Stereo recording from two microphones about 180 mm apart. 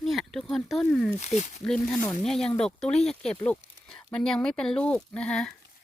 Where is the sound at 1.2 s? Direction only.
40° left (ahead or behind).